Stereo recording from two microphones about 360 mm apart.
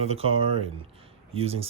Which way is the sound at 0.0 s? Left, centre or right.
Centre.